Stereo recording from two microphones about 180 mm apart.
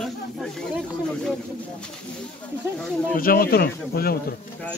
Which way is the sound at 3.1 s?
55° left (ahead or behind).